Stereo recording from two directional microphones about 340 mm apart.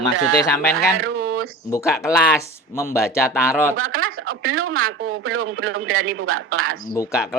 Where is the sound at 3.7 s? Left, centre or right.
Right.